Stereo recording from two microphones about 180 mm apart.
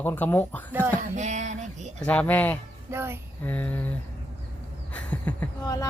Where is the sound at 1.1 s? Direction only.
40° right (ahead or behind).